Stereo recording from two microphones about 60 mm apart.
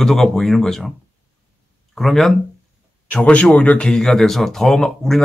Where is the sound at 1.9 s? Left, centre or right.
Centre.